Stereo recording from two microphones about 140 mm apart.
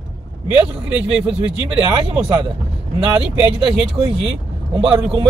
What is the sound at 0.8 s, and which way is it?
Speech, 10° right (ahead or behind).